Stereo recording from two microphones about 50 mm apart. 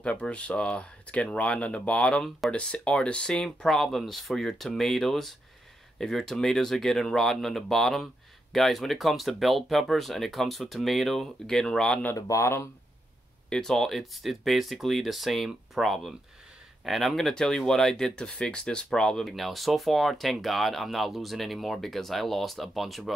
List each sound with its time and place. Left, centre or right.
0.0 s speech: left
3.6 s speech: centre
12.3 s speech: left
13.5 s speech: centre
17.3 s speech: centre
19.2 s speech: centre